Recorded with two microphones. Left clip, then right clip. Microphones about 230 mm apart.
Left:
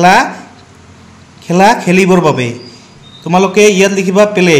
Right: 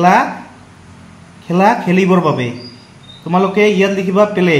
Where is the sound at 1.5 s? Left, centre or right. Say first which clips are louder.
Left 4 dB; left.